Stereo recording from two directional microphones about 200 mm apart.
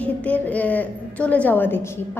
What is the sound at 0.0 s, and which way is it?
A woman's voice, 10° left (ahead or behind).